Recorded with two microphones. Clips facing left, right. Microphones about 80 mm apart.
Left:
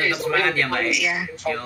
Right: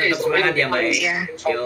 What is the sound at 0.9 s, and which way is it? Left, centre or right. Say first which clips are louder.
Speech: right 2 dB; right.